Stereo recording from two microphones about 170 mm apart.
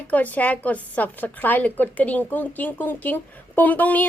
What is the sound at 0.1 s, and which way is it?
A woman's voice, 10° left (ahead or behind).